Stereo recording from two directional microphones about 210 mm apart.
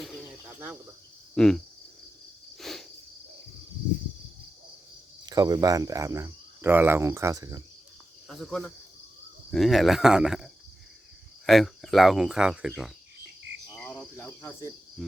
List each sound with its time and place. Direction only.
0.4 s cricket: 10° right (ahead or behind)
1.4 s speech: 5° left (ahead or behind)
2.6 s cricket: centre (ahead or behind)
5.2 s speech: 20° right (ahead or behind)
8.3 s speech: centre (ahead or behind)
13.7 s cricket: 10° left (ahead or behind)